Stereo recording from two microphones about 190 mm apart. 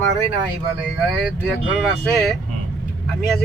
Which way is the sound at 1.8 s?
Centre (ahead or behind).